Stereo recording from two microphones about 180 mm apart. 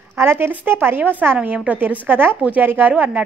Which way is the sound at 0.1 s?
10° right (ahead or behind).